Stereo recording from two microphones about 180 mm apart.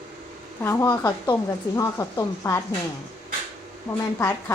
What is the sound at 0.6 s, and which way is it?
Speech, 15° left (ahead or behind).